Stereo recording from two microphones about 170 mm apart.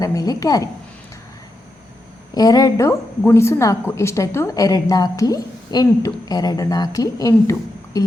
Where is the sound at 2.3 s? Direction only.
25° left (ahead or behind).